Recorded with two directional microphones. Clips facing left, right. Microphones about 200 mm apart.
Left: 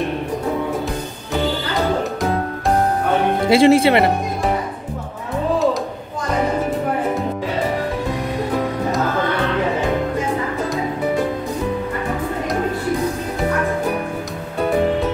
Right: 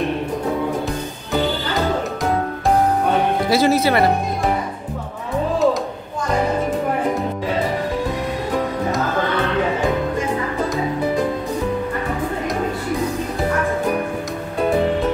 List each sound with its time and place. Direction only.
3.4 s speech: 25° left (ahead or behind)